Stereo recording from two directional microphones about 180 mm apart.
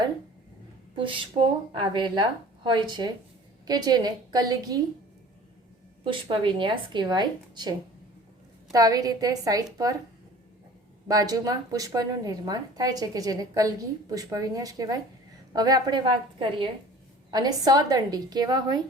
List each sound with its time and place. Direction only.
0.9 s a woman's voice: 30° right (ahead or behind)
6.1 s a woman's voice: 30° right (ahead or behind)
11.1 s a woman's voice: 20° right (ahead or behind)